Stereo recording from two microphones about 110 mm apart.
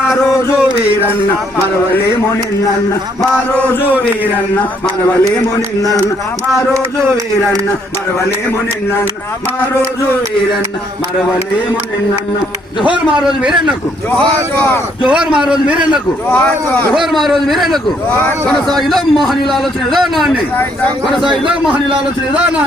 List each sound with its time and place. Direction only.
0.1 s a sound: 5° right (ahead or behind)
6.7 s speech: 30° right (ahead or behind)
12.9 s a man's voice: 10° right (ahead or behind)
14.1 s speech: 15° left (ahead or behind)
15.0 s a man's voice: 10° right (ahead or behind)
16.3 s speech: 15° left (ahead or behind)
16.9 s a man's voice: centre (ahead or behind)
18.1 s speech: 15° left (ahead or behind)
18.8 s a man's voice: centre (ahead or behind)